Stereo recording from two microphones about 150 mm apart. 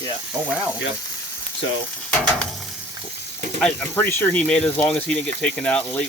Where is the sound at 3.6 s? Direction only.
10° left (ahead or behind).